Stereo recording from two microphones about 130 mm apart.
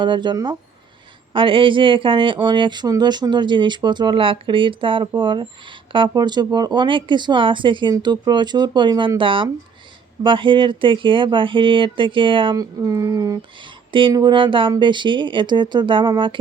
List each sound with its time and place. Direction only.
0.0 s speech: 35° right (ahead or behind)
12.5 s speech: 25° right (ahead or behind)